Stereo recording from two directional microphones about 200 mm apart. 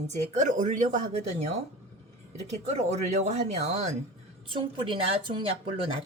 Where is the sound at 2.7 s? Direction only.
35° right (ahead or behind).